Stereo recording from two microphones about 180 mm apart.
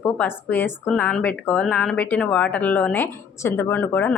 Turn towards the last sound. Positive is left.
turn(degrees=10)  # may be behind; listen again after turning